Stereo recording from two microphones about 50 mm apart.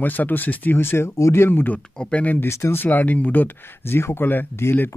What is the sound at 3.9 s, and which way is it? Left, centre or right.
Speech, left.